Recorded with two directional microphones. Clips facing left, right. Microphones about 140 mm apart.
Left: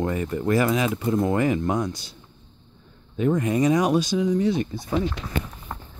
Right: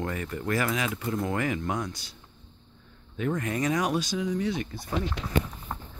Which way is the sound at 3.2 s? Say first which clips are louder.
Left 7 dB; 20° left (ahead or behind).